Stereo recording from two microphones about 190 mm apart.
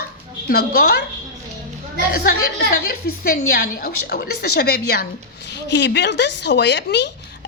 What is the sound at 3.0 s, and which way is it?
Speech, 55° left (ahead or behind).